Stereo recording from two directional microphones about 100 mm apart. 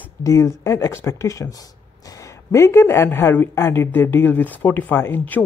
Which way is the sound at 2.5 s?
30° left (ahead or behind).